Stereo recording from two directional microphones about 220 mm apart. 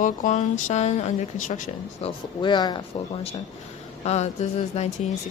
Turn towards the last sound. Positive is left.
turn(degrees=30)  # may be behind; listen again after turning